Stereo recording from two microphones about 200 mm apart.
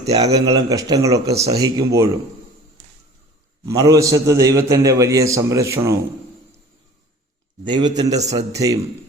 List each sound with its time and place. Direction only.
0.0 s speech: 30° right (ahead or behind)
0.3 s a man's voice: 20° right (ahead or behind)
3.7 s a man's voice: 15° right (ahead or behind)
7.6 s a man's voice: 20° right (ahead or behind)